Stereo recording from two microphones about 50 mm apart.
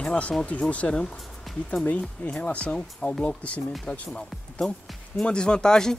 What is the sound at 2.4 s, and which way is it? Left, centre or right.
Speech, left.